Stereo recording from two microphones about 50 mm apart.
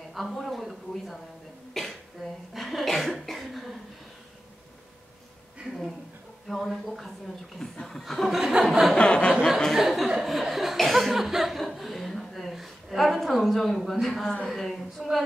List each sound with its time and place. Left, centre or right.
0.1 s a woman's voice: centre
1.7 s cough: centre
6.4 s a woman's voice: centre
8.3 s chuckle: centre
8.9 s chuckle: left
9.8 s chuckle: centre
14.5 s a woman's voice: centre